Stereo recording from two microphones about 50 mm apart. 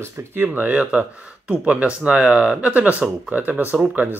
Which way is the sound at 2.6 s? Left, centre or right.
Right.